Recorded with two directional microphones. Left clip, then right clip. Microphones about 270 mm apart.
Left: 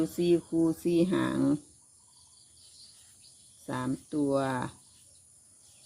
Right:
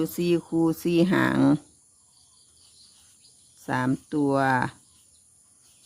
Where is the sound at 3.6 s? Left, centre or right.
Right.